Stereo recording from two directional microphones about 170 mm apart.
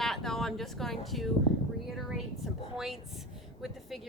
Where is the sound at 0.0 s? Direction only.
Centre (ahead or behind).